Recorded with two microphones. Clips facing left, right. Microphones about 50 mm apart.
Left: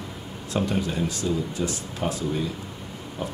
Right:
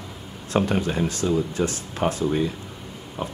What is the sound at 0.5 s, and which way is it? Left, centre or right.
Speech, right.